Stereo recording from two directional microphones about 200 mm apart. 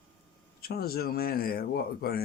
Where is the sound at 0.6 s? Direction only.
50° left (ahead or behind).